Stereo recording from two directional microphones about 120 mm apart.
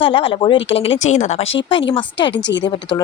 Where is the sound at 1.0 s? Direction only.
75° left (ahead or behind).